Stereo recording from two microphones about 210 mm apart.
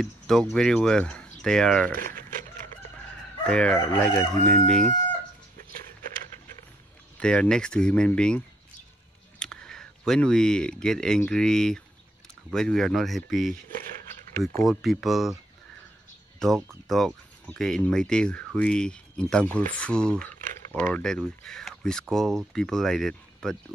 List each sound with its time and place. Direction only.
0.0 s speech: centre (ahead or behind)
2.0 s speech: 40° right (ahead or behind)
3.4 s speech: 5° left (ahead or behind)
7.2 s speech: 5° left (ahead or behind)
9.4 s speech: 5° left (ahead or behind)
14.6 s speech: centre (ahead or behind)
16.3 s speech: centre (ahead or behind)